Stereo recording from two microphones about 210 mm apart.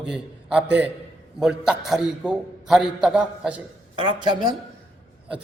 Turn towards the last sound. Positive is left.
turn(degrees=-20)  # may be behind; listen again after turning